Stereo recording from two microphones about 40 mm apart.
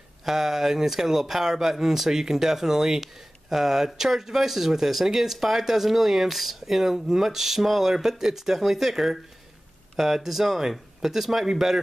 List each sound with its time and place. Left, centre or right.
0.2 s speech: centre